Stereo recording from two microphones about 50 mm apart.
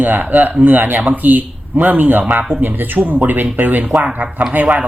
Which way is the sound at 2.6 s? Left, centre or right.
Right.